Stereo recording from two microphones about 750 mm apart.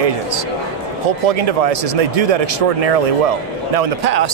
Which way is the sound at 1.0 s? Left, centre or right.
Right.